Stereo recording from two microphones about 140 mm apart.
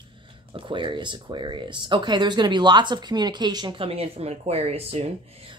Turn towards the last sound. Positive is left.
turn(degrees=-45)  # may be behind; listen again after turning